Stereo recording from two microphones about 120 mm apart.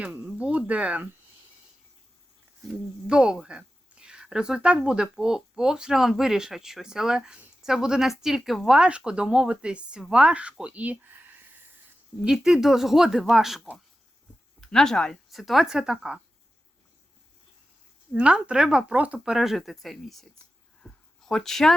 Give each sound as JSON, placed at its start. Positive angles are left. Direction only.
{"t": 0.0, "sound": "speech", "side_deg": -15}
{"t": 3.1, "sound": "speech", "side_deg": -5}
{"t": 12.2, "sound": "speech", "side_deg": -5}
{"t": 18.1, "sound": "speech", "side_deg": -5}
{"t": 20.8, "sound": "a sound", "side_deg": 5}